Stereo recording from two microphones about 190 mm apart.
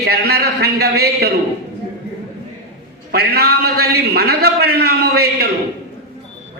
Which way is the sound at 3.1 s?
55° right (ahead or behind).